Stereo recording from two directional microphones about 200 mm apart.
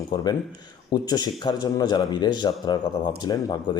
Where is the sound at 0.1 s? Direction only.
20° left (ahead or behind).